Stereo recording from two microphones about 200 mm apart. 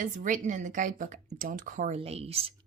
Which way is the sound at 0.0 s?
40° right (ahead or behind).